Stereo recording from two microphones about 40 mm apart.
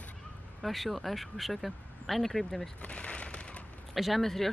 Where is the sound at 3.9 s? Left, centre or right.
Centre.